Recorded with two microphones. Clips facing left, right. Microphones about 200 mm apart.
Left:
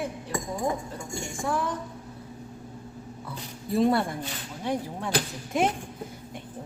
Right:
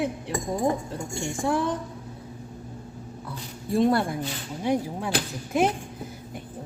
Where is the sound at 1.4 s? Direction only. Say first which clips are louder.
Right 4 dB; 30° right (ahead or behind).